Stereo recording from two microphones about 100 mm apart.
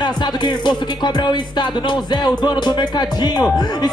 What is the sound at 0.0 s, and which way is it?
Speech, 45° left (ahead or behind).